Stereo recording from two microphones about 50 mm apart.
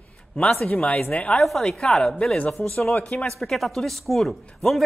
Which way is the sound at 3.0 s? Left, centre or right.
Centre.